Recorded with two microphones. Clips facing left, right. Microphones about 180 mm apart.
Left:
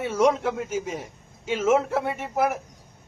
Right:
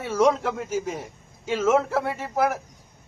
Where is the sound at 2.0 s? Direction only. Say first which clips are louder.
Even; 20° left (ahead or behind).